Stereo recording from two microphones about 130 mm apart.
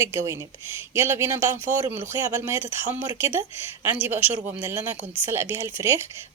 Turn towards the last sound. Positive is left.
turn(degrees=-20)  # may be behind; listen again after turning